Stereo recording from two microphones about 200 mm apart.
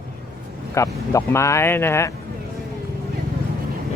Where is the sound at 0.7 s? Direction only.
15° left (ahead or behind).